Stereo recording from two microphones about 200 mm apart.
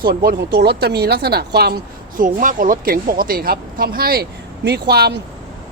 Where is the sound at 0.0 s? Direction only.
50° right (ahead or behind).